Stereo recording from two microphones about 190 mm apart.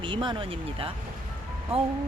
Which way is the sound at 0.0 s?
25° right (ahead or behind).